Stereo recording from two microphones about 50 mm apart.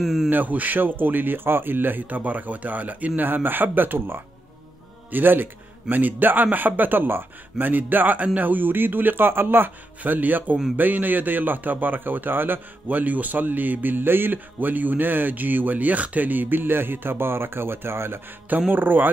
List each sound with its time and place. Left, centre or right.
0.0 s speech: centre
0.3 s speech: right
18.7 s speech: right